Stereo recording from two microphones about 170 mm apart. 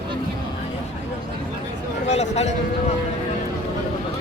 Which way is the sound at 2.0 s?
40° left (ahead or behind).